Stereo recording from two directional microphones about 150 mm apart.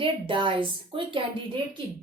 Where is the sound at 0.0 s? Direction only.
35° right (ahead or behind).